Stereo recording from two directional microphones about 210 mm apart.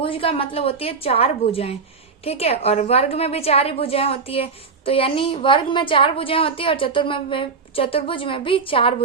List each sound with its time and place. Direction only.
0.0 s a woman's voice: 25° left (ahead or behind)